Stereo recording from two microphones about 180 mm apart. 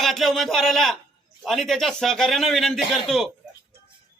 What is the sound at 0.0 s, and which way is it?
A man's voice, centre (ahead or behind).